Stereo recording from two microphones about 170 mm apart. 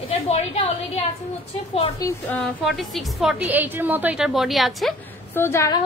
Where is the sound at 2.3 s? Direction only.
Centre (ahead or behind).